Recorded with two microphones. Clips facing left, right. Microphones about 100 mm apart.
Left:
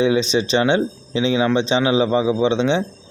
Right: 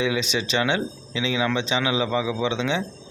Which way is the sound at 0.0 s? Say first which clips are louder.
Left 7 dB; 30° left (ahead or behind).